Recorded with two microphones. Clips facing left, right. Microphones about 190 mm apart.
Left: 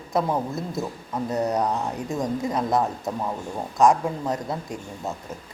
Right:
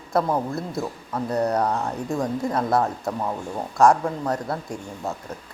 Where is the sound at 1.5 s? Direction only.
20° left (ahead or behind).